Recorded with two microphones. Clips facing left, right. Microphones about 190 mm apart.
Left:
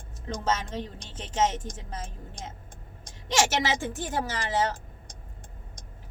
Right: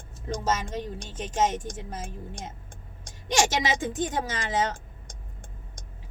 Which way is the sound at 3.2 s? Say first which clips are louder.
Right 1 dB; 15° right (ahead or behind).